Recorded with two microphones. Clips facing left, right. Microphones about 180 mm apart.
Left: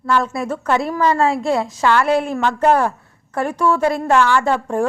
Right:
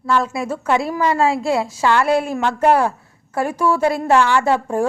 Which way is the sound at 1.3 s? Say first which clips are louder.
Even; 30° right (ahead or behind).